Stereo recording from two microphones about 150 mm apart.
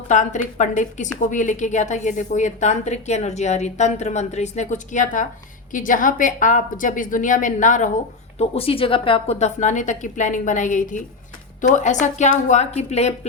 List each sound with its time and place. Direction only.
0.1 s a woman's voice: 55° left (ahead or behind)
8.4 s a woman's voice: 40° left (ahead or behind)